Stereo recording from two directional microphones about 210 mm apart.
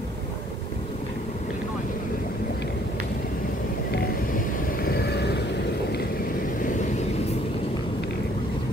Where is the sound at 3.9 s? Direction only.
45° left (ahead or behind).